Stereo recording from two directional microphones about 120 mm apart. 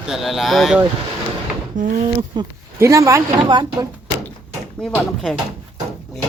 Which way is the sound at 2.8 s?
25° right (ahead or behind).